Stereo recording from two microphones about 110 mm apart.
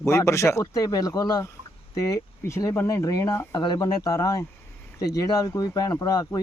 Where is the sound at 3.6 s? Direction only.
40° left (ahead or behind).